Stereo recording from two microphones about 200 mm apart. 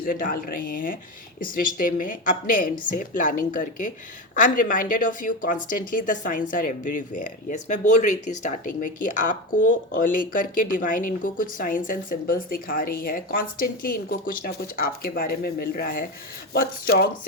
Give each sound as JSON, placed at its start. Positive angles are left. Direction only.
{"t": 0.0, "sound": "speech", "side_deg": 45}